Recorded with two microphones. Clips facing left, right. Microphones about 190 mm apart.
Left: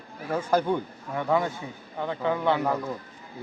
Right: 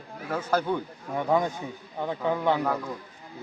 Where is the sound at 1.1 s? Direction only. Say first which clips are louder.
Right 1 dB; 15° right (ahead or behind).